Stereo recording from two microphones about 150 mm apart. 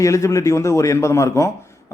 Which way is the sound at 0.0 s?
20° left (ahead or behind).